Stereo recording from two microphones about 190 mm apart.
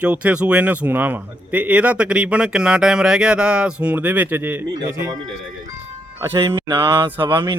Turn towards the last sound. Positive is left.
turn(degrees=-25)  # may be behind; listen again after turning